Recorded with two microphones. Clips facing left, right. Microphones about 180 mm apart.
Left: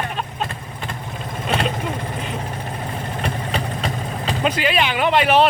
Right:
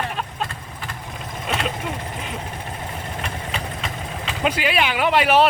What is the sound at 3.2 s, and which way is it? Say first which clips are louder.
Vehicle: left 6 dB; 35° left (ahead or behind).